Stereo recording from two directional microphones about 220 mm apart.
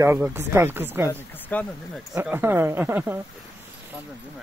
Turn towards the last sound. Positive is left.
turn(degrees=-10)  # may be behind; listen again after turning